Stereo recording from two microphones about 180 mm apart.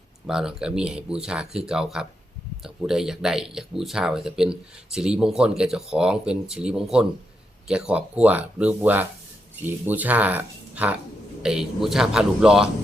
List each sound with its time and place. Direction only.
0.3 s speech: 5° right (ahead or behind)